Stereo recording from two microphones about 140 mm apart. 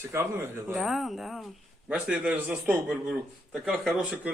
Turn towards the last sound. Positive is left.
turn(degrees=-5)  # may be behind; listen again after turning